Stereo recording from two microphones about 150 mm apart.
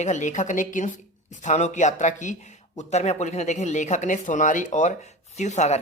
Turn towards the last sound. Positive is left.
turn(degrees=50)  # may be behind; listen again after turning